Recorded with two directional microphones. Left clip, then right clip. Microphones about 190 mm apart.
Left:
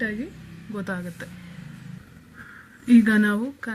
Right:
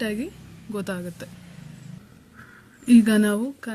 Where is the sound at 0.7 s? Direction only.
30° right (ahead or behind).